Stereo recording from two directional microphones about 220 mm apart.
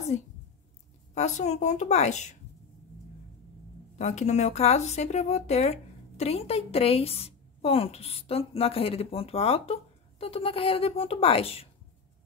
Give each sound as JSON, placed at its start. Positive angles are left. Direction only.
{"t": 1.1, "sound": "a woman's voice", "side_deg": 30}
{"t": 4.0, "sound": "speech", "side_deg": 30}